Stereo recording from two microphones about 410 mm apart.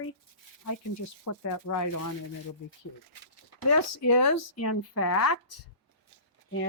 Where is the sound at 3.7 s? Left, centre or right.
Left.